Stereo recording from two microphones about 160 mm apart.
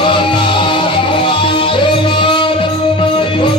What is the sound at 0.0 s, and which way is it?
Music, 30° left (ahead or behind).